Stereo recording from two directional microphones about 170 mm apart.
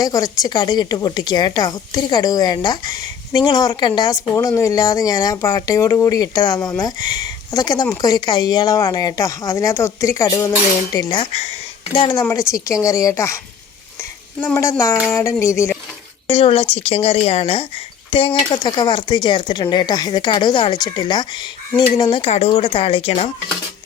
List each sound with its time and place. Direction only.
0.0 s a woman's voice: 20° left (ahead or behind)
11.2 s speech: 40° left (ahead or behind)
11.9 s a woman's voice: 30° left (ahead or behind)
12.2 s a woman's voice: 15° left (ahead or behind)
14.4 s a woman's voice: 15° left (ahead or behind)
16.2 s a woman's voice: 35° left (ahead or behind)